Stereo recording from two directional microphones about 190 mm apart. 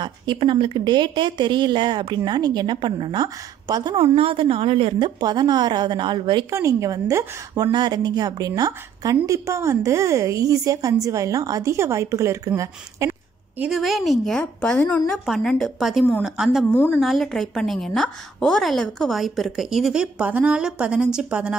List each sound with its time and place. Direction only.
0.0 s speech: 25° right (ahead or behind)
13.6 s a woman's voice: centre (ahead or behind)
16.7 s a woman's voice: 10° left (ahead or behind); by 21.5 s 5° right (ahead or behind)